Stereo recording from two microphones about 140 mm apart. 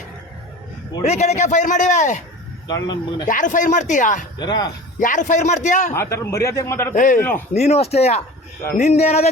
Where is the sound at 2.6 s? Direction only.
30° left (ahead or behind).